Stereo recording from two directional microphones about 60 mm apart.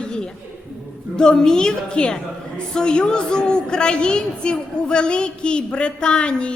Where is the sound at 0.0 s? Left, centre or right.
Centre.